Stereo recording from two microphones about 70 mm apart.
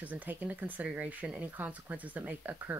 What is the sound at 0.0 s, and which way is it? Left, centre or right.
Speech, right.